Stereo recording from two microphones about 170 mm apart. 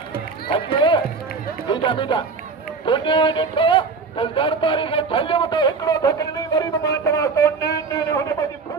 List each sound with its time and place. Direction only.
0.4 s run: 30° left (ahead or behind)
1.7 s music: 30° left (ahead or behind)
2.8 s speech: 30° left (ahead or behind)